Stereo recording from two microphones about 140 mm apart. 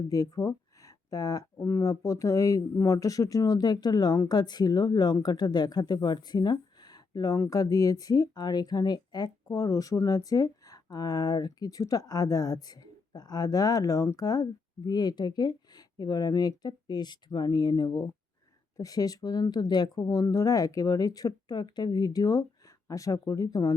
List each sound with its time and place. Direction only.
0.1 s speech: 25° left (ahead or behind)